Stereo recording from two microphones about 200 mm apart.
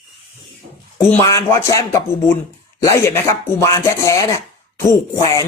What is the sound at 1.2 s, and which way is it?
Speech, 15° left (ahead or behind).